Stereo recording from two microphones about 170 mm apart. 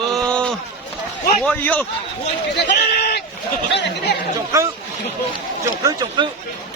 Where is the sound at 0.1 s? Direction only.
5° left (ahead or behind).